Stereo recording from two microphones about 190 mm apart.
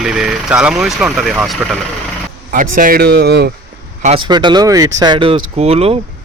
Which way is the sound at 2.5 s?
45° right (ahead or behind).